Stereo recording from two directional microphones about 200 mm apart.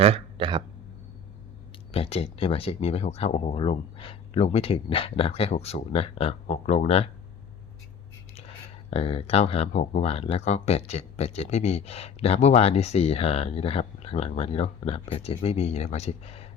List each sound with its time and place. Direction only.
0.0 s a sound: 30° right (ahead or behind)
1.9 s speech: 30° left (ahead or behind)
8.9 s speech: 30° left (ahead or behind)